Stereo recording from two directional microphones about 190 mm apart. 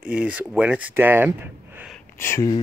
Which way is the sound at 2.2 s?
15° left (ahead or behind).